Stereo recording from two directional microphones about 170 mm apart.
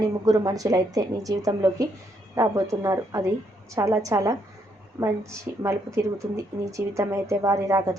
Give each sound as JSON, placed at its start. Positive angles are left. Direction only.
{"t": 0.3, "sound": "speech", "side_deg": -20}